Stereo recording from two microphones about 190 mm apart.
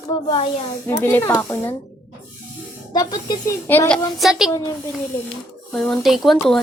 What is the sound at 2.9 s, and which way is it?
Speech, 20° left (ahead or behind).